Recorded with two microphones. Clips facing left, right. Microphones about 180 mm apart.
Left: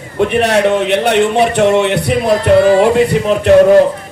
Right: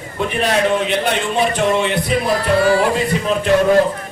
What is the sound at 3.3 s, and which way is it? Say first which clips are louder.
Speech: left 5 dB; 65° left (ahead or behind).